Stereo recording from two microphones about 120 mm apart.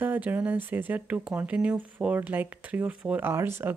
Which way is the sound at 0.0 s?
15° right (ahead or behind).